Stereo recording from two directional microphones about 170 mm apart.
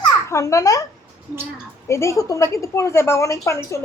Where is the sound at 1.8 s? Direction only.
15° left (ahead or behind).